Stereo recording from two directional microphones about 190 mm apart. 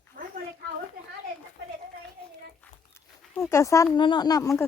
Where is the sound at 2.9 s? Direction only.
15° left (ahead or behind).